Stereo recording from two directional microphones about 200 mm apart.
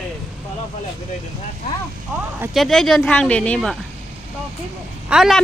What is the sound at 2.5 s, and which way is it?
Speech, centre (ahead or behind).